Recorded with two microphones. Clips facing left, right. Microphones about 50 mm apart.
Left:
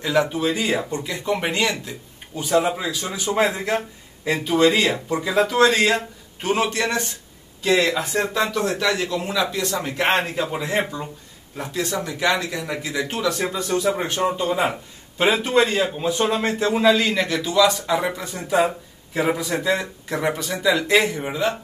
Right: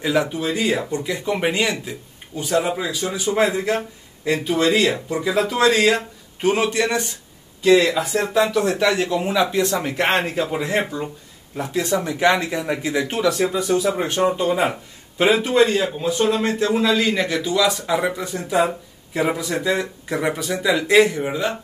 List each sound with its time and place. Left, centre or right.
0.0 s speech: centre
8.6 s speech: centre
10.1 s speech: centre
11.7 s speech: right
13.5 s speech: centre
14.3 s speech: centre
14.7 s speech: centre
16.9 s speech: centre